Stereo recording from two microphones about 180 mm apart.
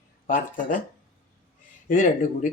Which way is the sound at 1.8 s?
45° left (ahead or behind).